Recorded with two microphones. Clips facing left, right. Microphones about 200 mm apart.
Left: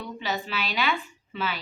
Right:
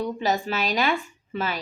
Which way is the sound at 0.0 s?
45° right (ahead or behind).